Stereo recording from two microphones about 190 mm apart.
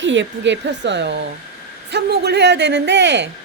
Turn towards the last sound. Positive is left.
turn(degrees=-65)  # may be behind; listen again after turning